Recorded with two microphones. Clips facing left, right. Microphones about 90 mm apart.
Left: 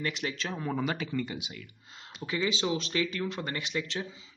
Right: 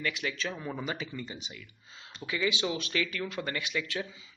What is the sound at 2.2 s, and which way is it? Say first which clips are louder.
Speech: left 1 dB; 35° left (ahead or behind).